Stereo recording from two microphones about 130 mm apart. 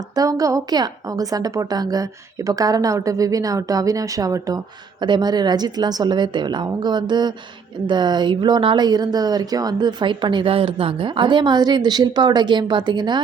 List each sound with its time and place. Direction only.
0.2 s a woman's voice: 30° right (ahead or behind)